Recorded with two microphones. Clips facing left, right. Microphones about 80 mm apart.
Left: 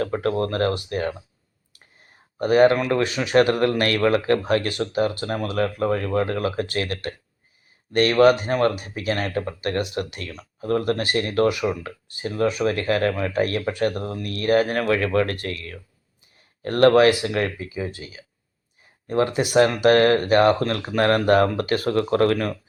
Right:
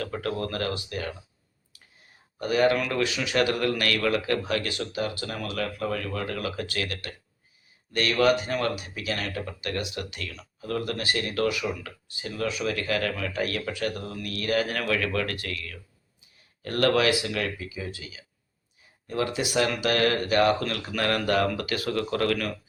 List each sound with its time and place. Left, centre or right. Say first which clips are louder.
0.0 s speech: left 7 dB; left
2.4 s speech: left 6 dB; left